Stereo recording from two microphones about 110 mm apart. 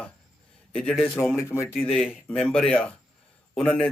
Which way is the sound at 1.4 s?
25° left (ahead or behind).